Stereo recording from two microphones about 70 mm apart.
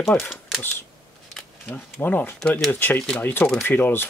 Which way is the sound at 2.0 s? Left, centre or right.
Left.